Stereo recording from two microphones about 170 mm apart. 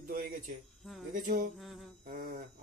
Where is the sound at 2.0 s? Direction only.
55° right (ahead or behind).